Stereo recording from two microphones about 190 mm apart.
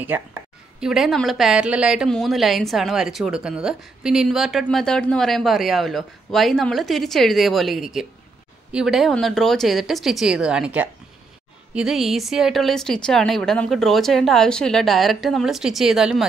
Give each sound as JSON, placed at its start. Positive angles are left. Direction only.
{"t": 0.0, "sound": "speech", "side_deg": -10}